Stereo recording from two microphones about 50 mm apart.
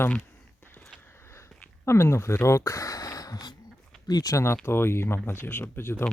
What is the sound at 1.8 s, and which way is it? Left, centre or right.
Speech, left.